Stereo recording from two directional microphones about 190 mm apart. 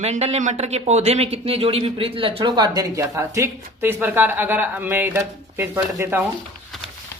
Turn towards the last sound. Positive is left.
turn(degrees=-10)  # may be behind; listen again after turning